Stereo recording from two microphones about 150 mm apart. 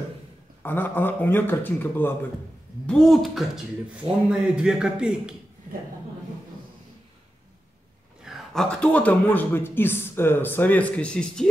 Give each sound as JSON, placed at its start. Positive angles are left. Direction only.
{"t": 0.6, "sound": "a man's voice", "side_deg": 10}
{"t": 2.9, "sound": "speech", "side_deg": 0}
{"t": 8.2, "sound": "a man's voice", "side_deg": 0}